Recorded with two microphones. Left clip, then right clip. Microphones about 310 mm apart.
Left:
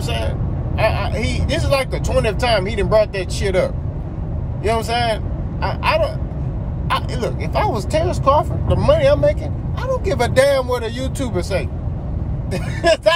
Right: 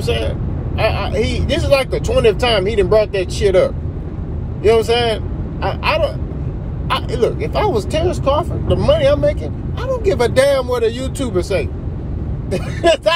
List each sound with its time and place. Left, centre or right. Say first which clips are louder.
0.7 s speech: right 2 dB; centre